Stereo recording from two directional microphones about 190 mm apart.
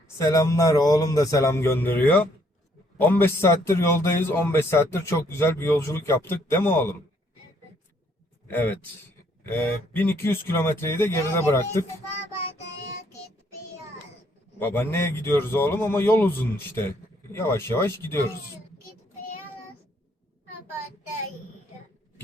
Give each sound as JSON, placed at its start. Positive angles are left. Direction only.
{"t": 0.2, "sound": "a man's voice", "side_deg": 15}
{"t": 8.4, "sound": "a man's voice", "side_deg": 10}
{"t": 14.6, "sound": "a man's voice", "side_deg": 10}